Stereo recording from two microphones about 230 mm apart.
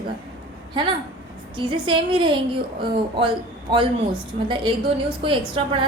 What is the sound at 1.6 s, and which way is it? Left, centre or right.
Speech, right.